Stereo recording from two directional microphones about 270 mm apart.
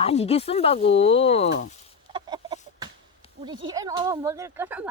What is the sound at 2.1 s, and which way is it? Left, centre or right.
Chicken, centre.